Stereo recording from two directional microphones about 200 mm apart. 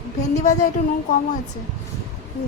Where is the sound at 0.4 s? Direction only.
40° left (ahead or behind).